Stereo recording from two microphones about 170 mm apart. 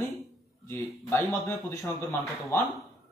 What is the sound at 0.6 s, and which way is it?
Speech, 15° left (ahead or behind).